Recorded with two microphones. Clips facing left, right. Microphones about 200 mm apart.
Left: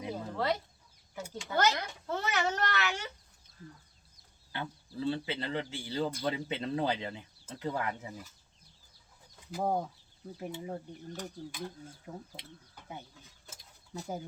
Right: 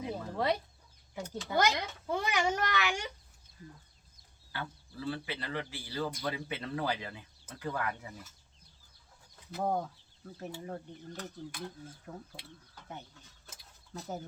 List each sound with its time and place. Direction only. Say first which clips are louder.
0.3 s speech: right 1 dB; 15° right (ahead or behind)
4.5 s speech: left 3 dB; 20° left (ahead or behind)
9.3 s speech: left 1 dB; 10° left (ahead or behind)